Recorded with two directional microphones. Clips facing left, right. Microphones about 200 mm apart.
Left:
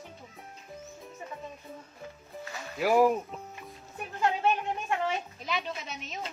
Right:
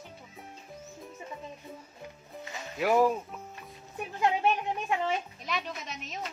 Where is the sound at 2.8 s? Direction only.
5° left (ahead or behind).